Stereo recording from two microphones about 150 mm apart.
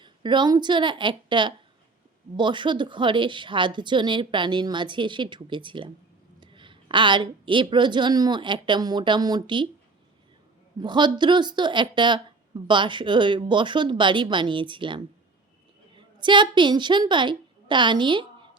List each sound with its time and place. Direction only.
0.0 s a woman's voice: 30° right (ahead or behind)
10.8 s a woman's voice: 30° right (ahead or behind)